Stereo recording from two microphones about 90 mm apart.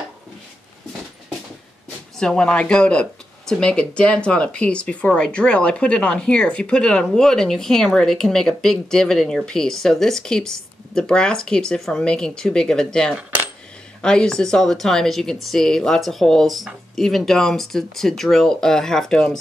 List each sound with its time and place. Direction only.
2.1 s speech: 10° left (ahead or behind)